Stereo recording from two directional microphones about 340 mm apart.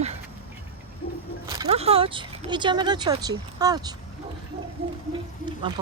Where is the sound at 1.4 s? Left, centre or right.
Centre.